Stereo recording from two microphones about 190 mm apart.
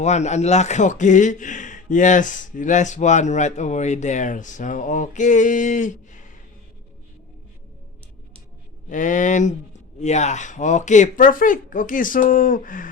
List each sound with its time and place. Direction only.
0.0 s a man's voice: 35° left (ahead or behind)
8.9 s a man's voice: 45° left (ahead or behind)